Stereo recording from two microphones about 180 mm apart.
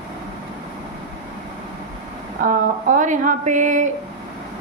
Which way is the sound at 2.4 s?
45° right (ahead or behind).